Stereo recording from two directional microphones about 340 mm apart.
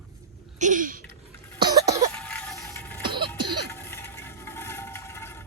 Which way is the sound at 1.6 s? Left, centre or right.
Centre.